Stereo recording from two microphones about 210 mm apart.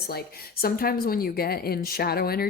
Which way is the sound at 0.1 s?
45° left (ahead or behind).